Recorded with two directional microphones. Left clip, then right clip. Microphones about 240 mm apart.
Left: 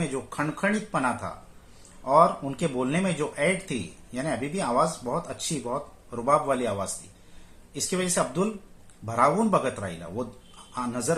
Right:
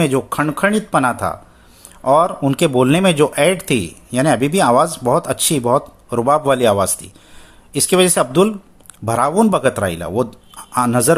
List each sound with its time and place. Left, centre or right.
0.0 s speech: right